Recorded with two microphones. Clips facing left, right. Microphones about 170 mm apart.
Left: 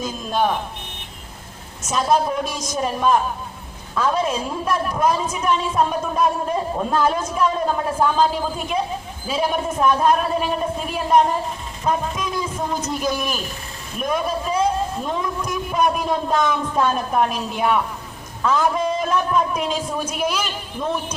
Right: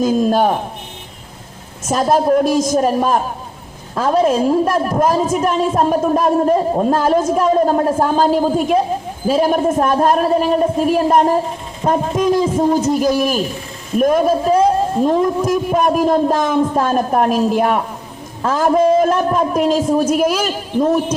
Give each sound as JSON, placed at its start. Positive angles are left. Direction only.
{"t": 0.0, "sound": "a man's voice", "side_deg": -50}
{"t": 1.8, "sound": "a man's voice", "side_deg": -50}